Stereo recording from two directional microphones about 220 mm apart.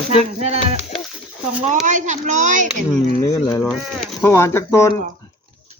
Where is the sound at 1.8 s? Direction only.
35° right (ahead or behind).